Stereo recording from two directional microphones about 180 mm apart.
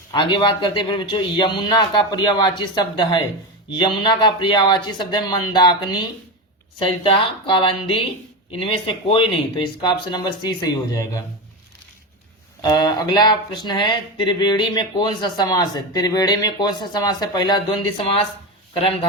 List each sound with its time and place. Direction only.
0.1 s speech: 25° left (ahead or behind)
12.6 s speech: 25° left (ahead or behind)